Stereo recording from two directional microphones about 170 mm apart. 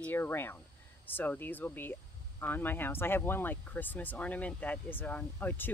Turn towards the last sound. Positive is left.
turn(degrees=10)  # may be behind; listen again after turning